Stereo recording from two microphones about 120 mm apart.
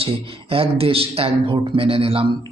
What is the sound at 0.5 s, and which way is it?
A man's voice, 50° right (ahead or behind).